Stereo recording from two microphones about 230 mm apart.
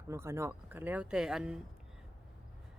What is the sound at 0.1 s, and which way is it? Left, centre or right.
Speech, centre.